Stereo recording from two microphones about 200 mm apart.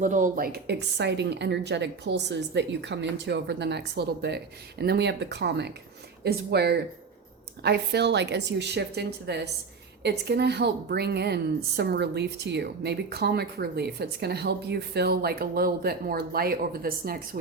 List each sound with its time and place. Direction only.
0.0 s a woman's voice: 40° right (ahead or behind)